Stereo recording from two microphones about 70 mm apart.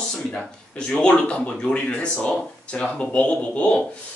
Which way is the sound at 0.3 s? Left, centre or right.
Centre.